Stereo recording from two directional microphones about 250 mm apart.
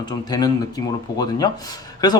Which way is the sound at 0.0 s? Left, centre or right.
Centre.